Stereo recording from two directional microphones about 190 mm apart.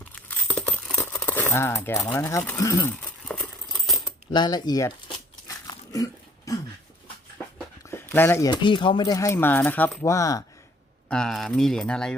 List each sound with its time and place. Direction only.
0.0 s crumpling: 10° left (ahead or behind)
3.8 s coin: centre (ahead or behind)
4.3 s crumpling: 20° left (ahead or behind)
7.9 s a sound: 10° left (ahead or behind)
8.4 s speech: 25° left (ahead or behind)
11.1 s speech: 5° left (ahead or behind)